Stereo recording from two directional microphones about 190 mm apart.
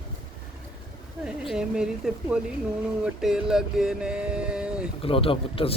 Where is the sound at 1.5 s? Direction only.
5° right (ahead or behind).